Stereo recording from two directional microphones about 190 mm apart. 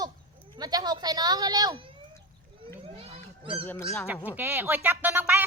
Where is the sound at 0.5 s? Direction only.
20° right (ahead or behind).